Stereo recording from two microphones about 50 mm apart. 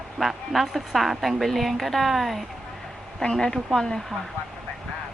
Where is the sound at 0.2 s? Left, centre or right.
Centre.